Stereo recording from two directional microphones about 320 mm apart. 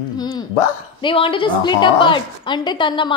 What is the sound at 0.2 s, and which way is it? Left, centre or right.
A woman's voice, centre.